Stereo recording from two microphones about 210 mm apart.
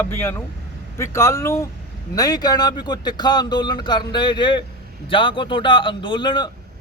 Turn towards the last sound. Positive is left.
turn(degrees=20)  # may be behind; listen again after turning